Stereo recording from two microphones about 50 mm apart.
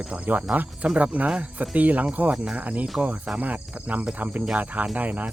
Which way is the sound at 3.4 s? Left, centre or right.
Right.